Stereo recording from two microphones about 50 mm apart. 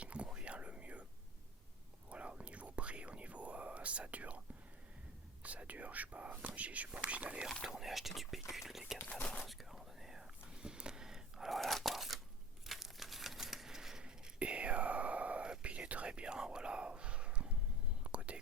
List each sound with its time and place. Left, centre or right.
0.0 s whispering: right
2.0 s whispering: right
5.4 s speech: right
7.6 s speech: centre
9.0 s speech: left
9.4 s whispering: centre
12.6 s crumpling: centre; by 17.6 s right
18.0 s whispering: right